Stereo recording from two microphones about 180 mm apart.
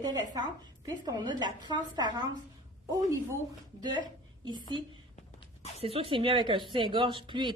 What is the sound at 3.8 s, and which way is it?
Speech, 25° right (ahead or behind).